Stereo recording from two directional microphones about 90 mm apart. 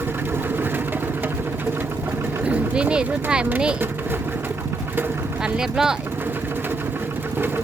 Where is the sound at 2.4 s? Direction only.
15° right (ahead or behind).